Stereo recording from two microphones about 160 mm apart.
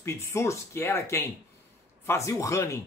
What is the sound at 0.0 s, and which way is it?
Speech, 15° left (ahead or behind).